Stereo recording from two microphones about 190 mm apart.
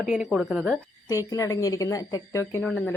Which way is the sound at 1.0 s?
15° left (ahead or behind).